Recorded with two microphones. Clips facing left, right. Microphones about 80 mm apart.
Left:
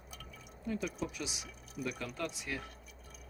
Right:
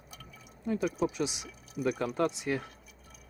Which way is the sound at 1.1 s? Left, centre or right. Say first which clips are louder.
Right 9 dB; right.